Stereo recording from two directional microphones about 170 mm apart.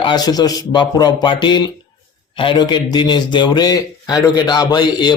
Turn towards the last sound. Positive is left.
turn(degrees=25)  # may be behind; listen again after turning